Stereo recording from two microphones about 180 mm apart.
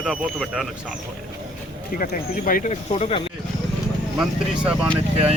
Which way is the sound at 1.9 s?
50° left (ahead or behind).